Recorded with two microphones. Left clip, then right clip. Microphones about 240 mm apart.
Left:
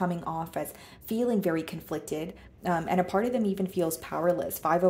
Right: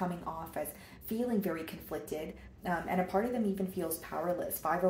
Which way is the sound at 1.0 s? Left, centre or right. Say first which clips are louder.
Left 7 dB; left.